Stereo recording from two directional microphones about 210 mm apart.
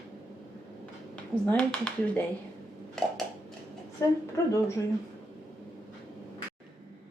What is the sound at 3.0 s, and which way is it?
Dishes, 5° left (ahead or behind).